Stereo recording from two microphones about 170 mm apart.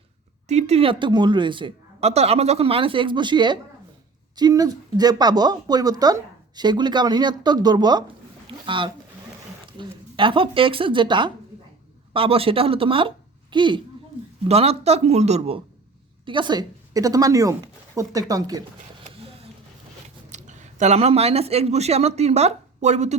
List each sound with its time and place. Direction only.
0.4 s a woman's voice: 40° right (ahead or behind); by 18.6 s 20° right (ahead or behind)
19.1 s a sound: 35° right (ahead or behind)
20.3 s speech: 45° right (ahead or behind)